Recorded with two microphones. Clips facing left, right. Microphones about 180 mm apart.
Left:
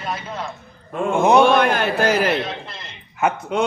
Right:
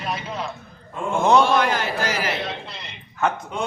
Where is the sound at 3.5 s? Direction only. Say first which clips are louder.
Left 7 dB; 75° left (ahead or behind).